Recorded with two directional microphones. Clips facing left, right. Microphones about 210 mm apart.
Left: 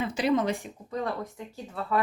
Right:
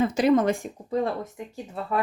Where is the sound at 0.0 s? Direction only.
45° right (ahead or behind).